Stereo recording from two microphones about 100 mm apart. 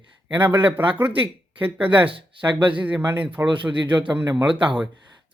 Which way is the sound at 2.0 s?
60° right (ahead or behind).